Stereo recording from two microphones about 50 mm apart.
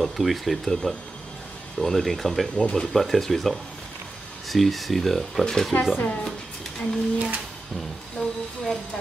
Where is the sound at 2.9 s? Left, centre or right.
Centre.